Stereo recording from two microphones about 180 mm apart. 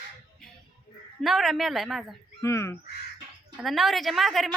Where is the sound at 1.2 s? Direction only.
Centre (ahead or behind).